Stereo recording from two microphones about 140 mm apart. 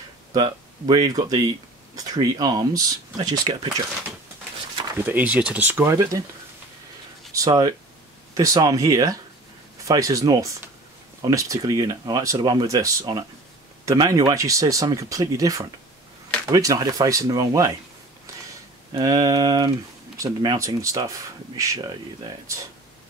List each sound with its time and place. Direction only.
0.3 s speech: 30° right (ahead or behind)
5.0 s speech: 10° right (ahead or behind)
7.3 s speech: 25° right (ahead or behind)
18.9 s speech: 25° right (ahead or behind)